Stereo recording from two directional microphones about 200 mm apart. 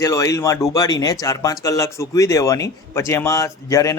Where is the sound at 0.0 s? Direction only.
15° left (ahead or behind).